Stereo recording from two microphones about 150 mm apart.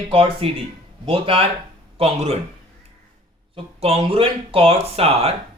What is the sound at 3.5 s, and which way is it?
A man's voice, 40° right (ahead or behind).